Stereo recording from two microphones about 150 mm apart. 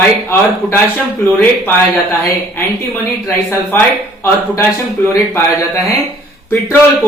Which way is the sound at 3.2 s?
20° left (ahead or behind).